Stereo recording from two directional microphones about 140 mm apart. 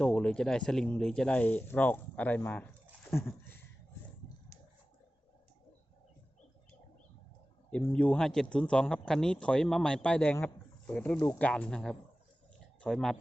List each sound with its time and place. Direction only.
0.0 s speech: 5° left (ahead or behind)
7.7 s speech: 10° left (ahead or behind)
12.5 s a sound: centre (ahead or behind)